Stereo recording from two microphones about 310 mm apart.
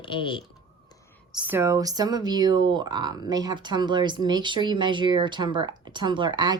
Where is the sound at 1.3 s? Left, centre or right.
Centre.